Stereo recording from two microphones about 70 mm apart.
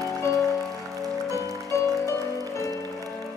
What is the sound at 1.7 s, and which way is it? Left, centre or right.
Music, left.